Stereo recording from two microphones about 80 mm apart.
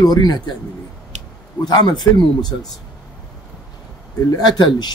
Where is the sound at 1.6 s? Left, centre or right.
Left.